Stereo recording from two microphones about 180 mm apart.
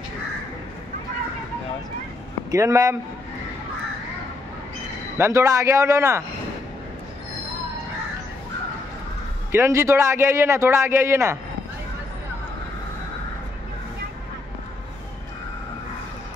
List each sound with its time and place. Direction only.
2.5 s a man's voice: 15° right (ahead or behind)
5.1 s a man's voice: 15° right (ahead or behind)
9.5 s a man's voice: 15° right (ahead or behind)